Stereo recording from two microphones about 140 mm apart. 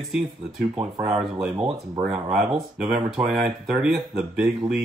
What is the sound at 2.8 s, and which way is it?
Speech, 5° right (ahead or behind).